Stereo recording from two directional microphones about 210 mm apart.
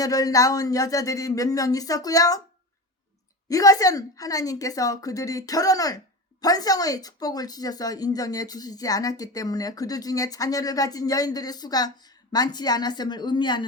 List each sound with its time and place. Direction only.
0.0 s a woman's voice: 15° left (ahead or behind)
3.5 s a woman's voice: 15° left (ahead or behind)